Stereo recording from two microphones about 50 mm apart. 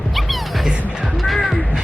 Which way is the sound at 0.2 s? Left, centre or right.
Centre.